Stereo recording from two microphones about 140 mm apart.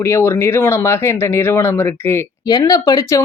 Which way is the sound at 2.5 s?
25° left (ahead or behind).